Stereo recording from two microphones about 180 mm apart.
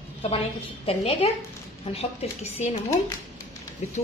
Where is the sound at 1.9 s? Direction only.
35° left (ahead or behind).